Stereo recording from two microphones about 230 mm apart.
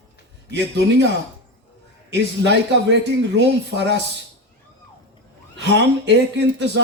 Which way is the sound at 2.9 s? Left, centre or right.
Right.